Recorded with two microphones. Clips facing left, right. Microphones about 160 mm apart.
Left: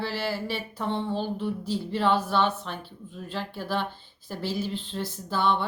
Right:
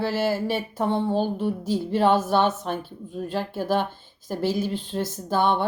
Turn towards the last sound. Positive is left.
turn(degrees=-50)  # may be behind; listen again after turning